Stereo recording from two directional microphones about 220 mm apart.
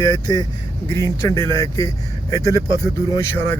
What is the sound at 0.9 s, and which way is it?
Speech, 15° left (ahead or behind).